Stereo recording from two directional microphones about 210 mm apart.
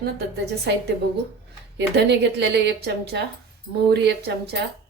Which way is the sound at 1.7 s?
50° right (ahead or behind).